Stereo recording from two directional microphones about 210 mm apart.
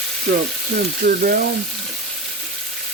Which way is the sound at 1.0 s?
40° right (ahead or behind).